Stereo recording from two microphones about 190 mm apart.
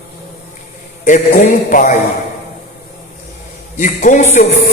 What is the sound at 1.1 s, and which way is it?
Speech, 45° left (ahead or behind).